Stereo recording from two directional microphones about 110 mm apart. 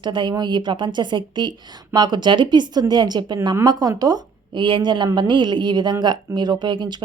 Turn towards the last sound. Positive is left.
turn(degrees=-45)  # may be behind; listen again after turning